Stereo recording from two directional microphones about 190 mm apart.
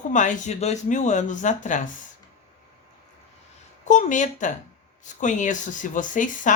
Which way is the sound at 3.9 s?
40° left (ahead or behind).